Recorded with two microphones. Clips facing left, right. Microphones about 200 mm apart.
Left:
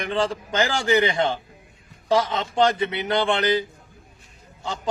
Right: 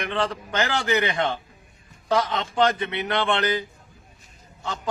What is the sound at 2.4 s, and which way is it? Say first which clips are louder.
A man's voice: left 2 dB; 25° left (ahead or behind).